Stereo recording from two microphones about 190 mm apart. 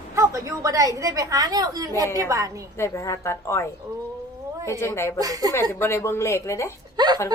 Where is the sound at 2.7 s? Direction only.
15° left (ahead or behind).